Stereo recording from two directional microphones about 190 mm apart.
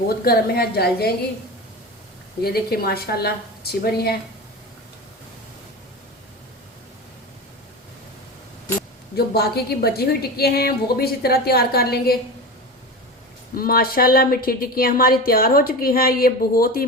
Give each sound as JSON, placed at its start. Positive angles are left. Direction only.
{"t": 0.3, "sound": "a woman's voice", "side_deg": 55}
{"t": 2.4, "sound": "a woman's voice", "side_deg": 55}
{"t": 9.1, "sound": "a woman's voice", "side_deg": 55}
{"t": 13.6, "sound": "a woman's voice", "side_deg": 50}